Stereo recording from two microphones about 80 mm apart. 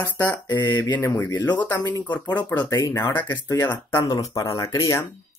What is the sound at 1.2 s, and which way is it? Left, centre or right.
Speech, left.